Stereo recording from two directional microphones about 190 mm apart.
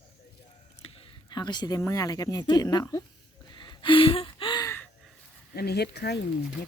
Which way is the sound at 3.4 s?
25° left (ahead or behind).